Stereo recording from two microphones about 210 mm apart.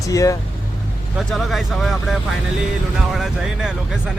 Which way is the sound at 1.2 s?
Centre (ahead or behind).